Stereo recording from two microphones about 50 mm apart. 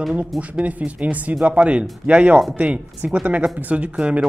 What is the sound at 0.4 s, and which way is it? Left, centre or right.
Speech, right.